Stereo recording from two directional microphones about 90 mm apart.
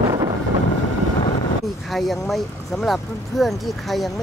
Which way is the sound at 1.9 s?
Centre (ahead or behind).